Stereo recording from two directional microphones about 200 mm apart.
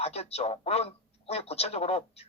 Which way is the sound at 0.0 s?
30° left (ahead or behind).